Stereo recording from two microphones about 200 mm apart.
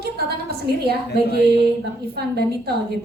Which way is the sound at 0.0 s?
55° right (ahead or behind).